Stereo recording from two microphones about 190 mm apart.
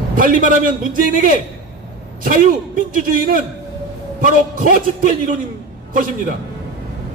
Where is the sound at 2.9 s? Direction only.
45° right (ahead or behind).